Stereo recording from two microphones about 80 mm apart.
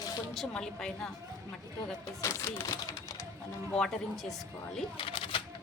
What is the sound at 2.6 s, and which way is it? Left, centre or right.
Speech, left.